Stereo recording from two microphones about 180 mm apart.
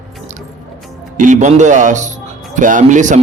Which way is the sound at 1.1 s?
45° right (ahead or behind).